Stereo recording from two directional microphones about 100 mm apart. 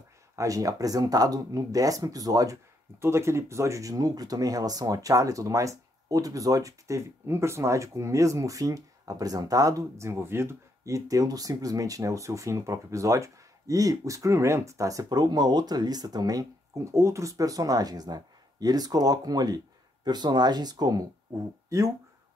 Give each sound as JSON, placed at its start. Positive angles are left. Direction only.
{"t": 0.4, "sound": "speech", "side_deg": -35}